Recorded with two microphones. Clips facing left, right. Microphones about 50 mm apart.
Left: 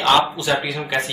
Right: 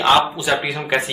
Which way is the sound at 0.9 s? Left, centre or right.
Right.